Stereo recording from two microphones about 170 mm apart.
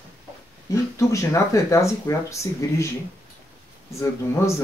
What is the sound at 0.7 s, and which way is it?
Speech, 20° left (ahead or behind).